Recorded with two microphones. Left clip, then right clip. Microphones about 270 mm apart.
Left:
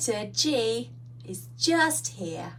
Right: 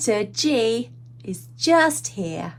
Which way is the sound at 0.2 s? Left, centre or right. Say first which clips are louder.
Right 5 dB; centre.